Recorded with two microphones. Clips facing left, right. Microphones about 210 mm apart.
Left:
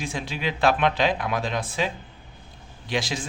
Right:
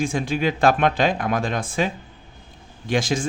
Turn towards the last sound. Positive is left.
turn(degrees=-45)  # may be behind; listen again after turning